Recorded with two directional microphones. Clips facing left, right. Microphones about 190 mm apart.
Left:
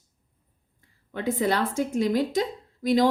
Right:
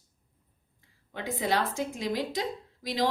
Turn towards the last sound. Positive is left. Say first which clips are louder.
# left 8 dB
turn(degrees=50)  # may be behind; listen again after turning